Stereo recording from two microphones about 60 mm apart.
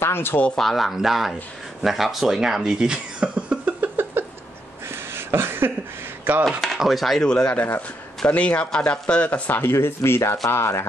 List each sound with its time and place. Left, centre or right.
0.0 s speech: left
0.6 s speech: centre
3.8 s a sound: right
6.3 s chopping: right
6.8 s speech: centre
7.2 s speech: centre
7.5 s speech: left
9.6 s speech: left